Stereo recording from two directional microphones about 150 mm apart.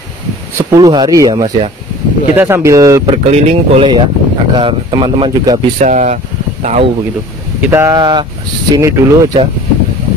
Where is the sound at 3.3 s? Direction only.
40° right (ahead or behind).